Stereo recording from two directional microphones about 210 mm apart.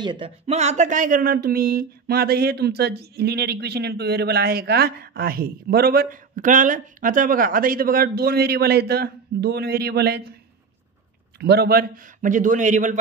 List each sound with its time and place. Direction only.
0.0 s speech: 25° right (ahead or behind); by 10.3 s 50° right (ahead or behind)
11.3 s a man's voice: 50° right (ahead or behind)